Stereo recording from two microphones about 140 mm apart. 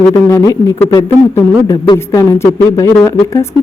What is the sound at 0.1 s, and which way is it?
Speech, 20° left (ahead or behind).